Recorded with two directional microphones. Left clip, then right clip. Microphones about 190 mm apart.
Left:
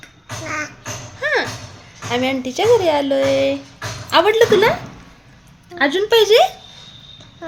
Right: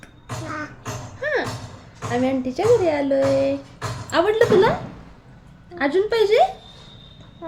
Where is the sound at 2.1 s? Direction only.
10° left (ahead or behind).